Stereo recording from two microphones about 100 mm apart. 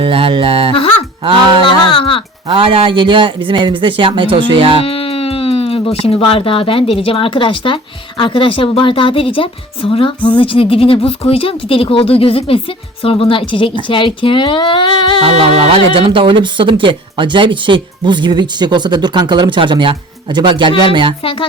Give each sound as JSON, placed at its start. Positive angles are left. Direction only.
{"t": 0.0, "sound": "a man's voice", "side_deg": -65}
{"t": 1.6, "sound": "a sound", "side_deg": 60}
{"t": 2.5, "sound": "a man's voice", "side_deg": -65}
{"t": 4.8, "sound": "a woman's voice", "side_deg": 75}
{"t": 15.2, "sound": "speech", "side_deg": -85}